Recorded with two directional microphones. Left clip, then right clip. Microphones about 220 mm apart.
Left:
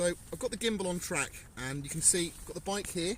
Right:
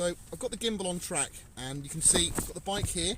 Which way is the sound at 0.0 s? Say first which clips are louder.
Even; centre (ahead or behind).